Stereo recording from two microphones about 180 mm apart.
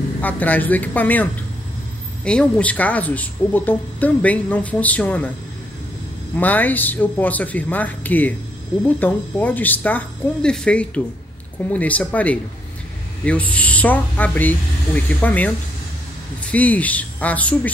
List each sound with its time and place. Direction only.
0.2 s speech: 10° left (ahead or behind)
6.3 s speech: 10° left (ahead or behind)